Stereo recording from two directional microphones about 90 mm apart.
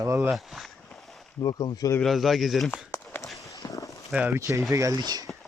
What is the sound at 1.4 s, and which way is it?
Speech, 50° left (ahead or behind).